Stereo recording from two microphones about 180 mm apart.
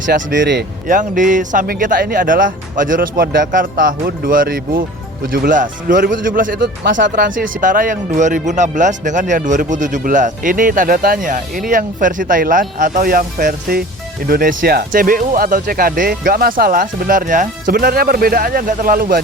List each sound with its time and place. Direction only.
0.0 s speech: 50° right (ahead or behind)
0.3 s speech: 70° right (ahead or behind)
0.9 s speech: 45° right (ahead or behind)